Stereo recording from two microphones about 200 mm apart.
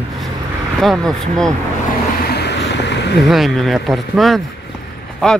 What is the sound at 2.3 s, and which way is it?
Vehicle, 55° left (ahead or behind).